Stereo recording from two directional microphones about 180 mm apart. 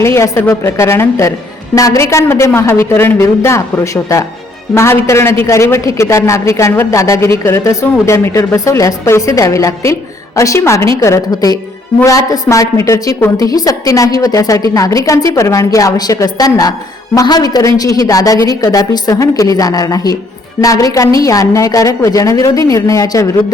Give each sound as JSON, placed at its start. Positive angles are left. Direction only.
{"t": 0.0, "sound": "a woman's voice", "side_deg": 15}